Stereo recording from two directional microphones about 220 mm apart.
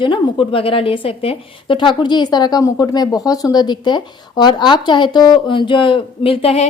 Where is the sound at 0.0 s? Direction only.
20° left (ahead or behind).